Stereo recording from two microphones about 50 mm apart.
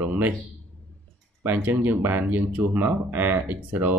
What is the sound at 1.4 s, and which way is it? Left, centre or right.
Speech, right.